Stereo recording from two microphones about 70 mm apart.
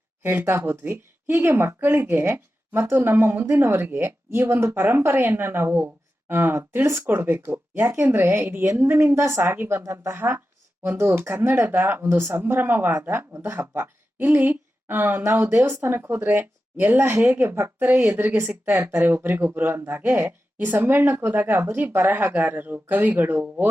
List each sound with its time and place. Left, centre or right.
0.2 s a woman's voice: right
15.3 s speech: right